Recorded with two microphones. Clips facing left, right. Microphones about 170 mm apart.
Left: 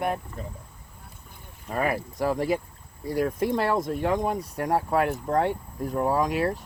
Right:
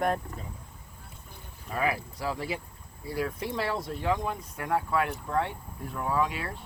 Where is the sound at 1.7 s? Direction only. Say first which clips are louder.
Left 3 dB; 45° left (ahead or behind).